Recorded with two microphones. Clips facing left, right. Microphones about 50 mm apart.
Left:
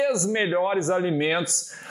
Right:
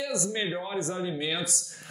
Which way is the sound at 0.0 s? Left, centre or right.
Left.